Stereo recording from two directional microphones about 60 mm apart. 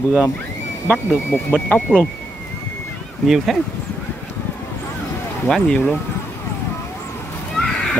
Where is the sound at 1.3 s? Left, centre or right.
Left.